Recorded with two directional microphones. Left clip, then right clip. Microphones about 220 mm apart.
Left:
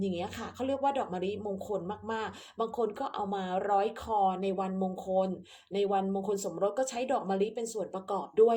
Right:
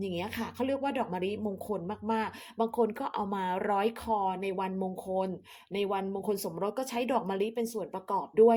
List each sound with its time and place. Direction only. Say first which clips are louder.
0.0 s speech: even; 25° right (ahead or behind)